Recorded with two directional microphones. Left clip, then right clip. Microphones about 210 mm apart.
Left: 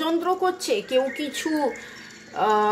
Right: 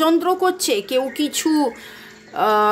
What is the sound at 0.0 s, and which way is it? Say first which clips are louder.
A woman's voice: right 6 dB; 40° right (ahead or behind).